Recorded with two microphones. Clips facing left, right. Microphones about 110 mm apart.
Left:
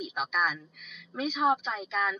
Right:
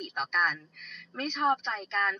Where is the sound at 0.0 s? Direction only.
5° left (ahead or behind).